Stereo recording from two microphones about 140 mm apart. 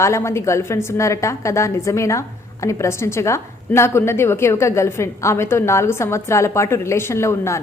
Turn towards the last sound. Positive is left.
turn(degrees=20)  # may be behind; listen again after turning